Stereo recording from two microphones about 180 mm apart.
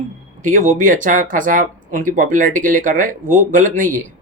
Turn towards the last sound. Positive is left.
turn(degrees=-45)  # may be behind; listen again after turning